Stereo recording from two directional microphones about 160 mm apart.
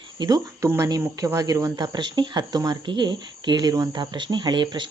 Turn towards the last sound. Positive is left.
turn(degrees=-30)  # may be behind; listen again after turning